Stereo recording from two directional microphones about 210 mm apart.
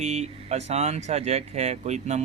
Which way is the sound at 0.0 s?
30° right (ahead or behind).